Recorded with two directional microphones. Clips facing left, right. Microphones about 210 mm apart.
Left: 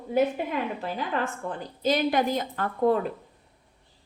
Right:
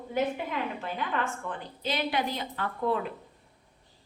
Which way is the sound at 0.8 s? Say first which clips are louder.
Left 3 dB; 35° left (ahead or behind).